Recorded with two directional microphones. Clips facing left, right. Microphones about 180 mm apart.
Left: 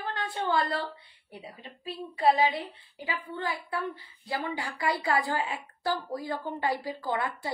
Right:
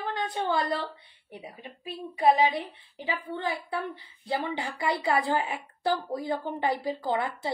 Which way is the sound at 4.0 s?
20° right (ahead or behind).